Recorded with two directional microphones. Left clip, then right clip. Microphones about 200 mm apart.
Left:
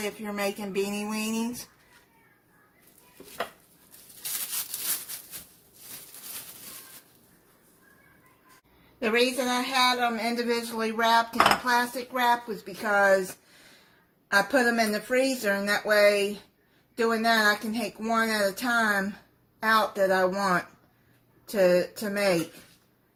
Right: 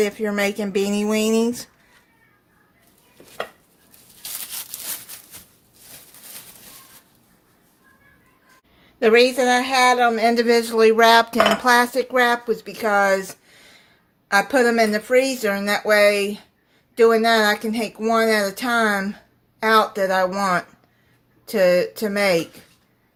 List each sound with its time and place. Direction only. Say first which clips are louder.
0.0 s speech: right 10 dB; 45° right (ahead or behind)
9.0 s a woman's voice: right 10 dB; 40° right (ahead or behind)
14.3 s a woman's voice: right 6 dB; 35° right (ahead or behind)